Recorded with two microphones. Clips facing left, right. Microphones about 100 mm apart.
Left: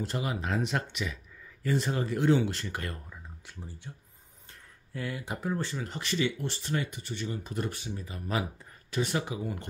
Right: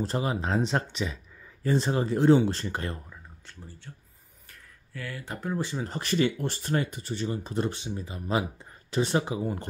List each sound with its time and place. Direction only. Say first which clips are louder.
0.0 s speech: right 4 dB; 35° right (ahead or behind)
3.4 s speech: left 2 dB; 15° left (ahead or behind)
4.5 s a sound: left 1 dB; 25° left (ahead or behind)
5.6 s speech: right 3 dB; 15° right (ahead or behind)
5.9 s speech: right 6 dB; 45° right (ahead or behind)